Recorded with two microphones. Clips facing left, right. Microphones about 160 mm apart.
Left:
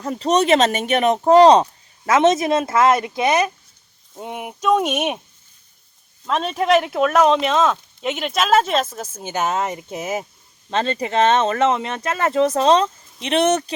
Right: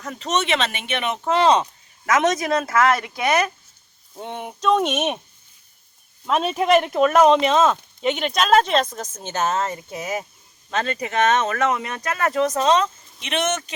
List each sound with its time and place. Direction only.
0.0 s speech: 35° left (ahead or behind)
2.0 s speech: 25° left (ahead or behind)
4.1 s speech: 10° left (ahead or behind)
6.2 s speech: 5° right (ahead or behind); by 13.7 s 35° left (ahead or behind)